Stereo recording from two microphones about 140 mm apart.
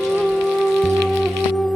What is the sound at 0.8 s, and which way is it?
Music, centre (ahead or behind).